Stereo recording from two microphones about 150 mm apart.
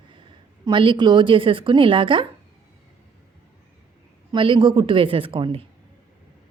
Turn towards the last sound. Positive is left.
turn(degrees=-35)  # may be behind; listen again after turning